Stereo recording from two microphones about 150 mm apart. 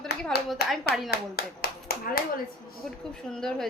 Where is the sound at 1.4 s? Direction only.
90° left.